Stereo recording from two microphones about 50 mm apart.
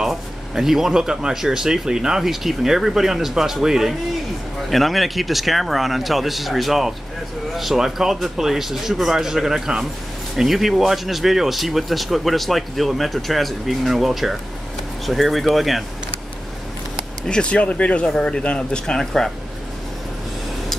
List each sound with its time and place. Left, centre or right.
0.0 s speech: centre
17.3 s speech: left